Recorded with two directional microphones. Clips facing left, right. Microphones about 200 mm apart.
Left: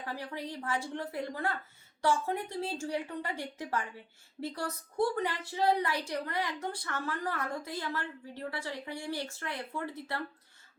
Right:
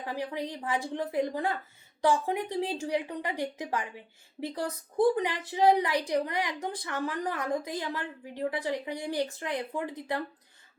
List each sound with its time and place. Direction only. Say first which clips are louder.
0.0 s a woman's voice: right 5 dB; 15° right (ahead or behind)